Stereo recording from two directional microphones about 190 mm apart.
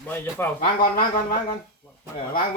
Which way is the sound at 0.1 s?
10° left (ahead or behind).